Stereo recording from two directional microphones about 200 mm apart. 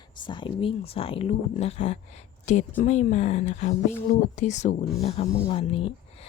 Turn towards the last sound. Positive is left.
turn(degrees=30)  # may be behind; listen again after turning